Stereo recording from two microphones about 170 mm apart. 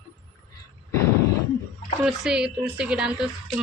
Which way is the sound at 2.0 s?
5° right (ahead or behind).